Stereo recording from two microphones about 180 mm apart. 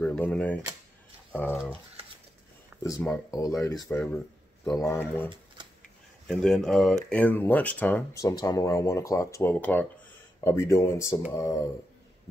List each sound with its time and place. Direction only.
0.0 s speech: 10° left (ahead or behind)
2.8 s speech: 15° left (ahead or behind)
4.7 s speech: 15° left (ahead or behind)
6.2 s speech: 5° left (ahead or behind)